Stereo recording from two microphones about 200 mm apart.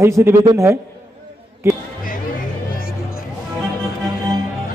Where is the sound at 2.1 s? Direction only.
45° left (ahead or behind).